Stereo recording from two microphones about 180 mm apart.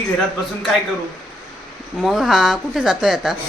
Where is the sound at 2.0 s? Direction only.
Centre (ahead or behind).